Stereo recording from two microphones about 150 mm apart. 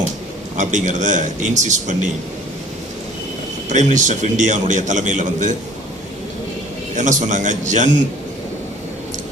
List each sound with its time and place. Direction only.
0.5 s a man's voice: 55° right (ahead or behind)
3.7 s a man's voice: 55° right (ahead or behind)
6.9 s a man's voice: 55° right (ahead or behind)